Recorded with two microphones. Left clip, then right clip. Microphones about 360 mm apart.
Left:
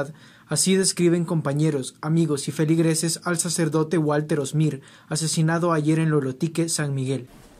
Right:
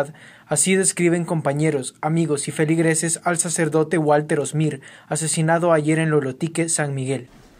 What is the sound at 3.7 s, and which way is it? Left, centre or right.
Speech, right.